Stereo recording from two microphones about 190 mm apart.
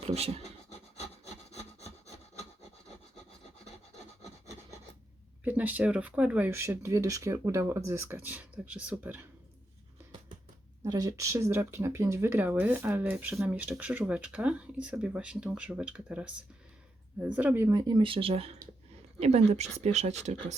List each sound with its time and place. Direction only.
0.0 s scratch: 30° right (ahead or behind)
1.5 s wood: 35° left (ahead or behind)
5.5 s speech: 10° right (ahead or behind)
10.8 s speech: 20° right (ahead or behind)
17.3 s speech: 10° right (ahead or behind); by 20.3 s 35° right (ahead or behind)